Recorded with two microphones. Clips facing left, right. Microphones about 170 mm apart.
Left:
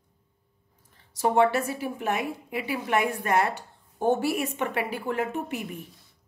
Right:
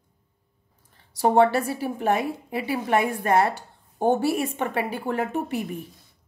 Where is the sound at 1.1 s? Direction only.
30° right (ahead or behind).